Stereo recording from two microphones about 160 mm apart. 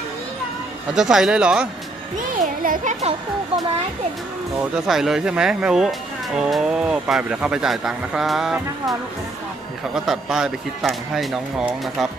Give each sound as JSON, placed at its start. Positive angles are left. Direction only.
{"t": 0.9, "sound": "speech", "side_deg": -5}
{"t": 2.6, "sound": "speech", "side_deg": -55}
{"t": 4.6, "sound": "speech", "side_deg": -5}
{"t": 9.9, "sound": "speech", "side_deg": -5}